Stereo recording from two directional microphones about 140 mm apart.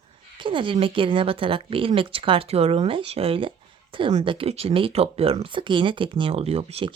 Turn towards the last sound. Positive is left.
turn(degrees=-45)  # may be behind; listen again after turning